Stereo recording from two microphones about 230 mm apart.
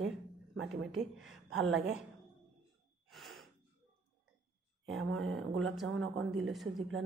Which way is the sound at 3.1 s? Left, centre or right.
Centre.